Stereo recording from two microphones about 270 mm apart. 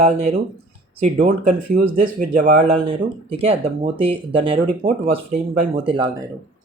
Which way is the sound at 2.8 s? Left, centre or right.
Right.